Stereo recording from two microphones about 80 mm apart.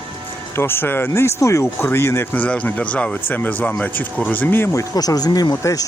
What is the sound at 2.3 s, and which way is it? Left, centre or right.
Speech, centre.